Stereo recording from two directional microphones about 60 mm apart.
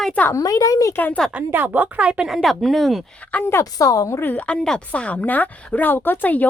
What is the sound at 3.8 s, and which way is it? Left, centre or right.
Speech, left.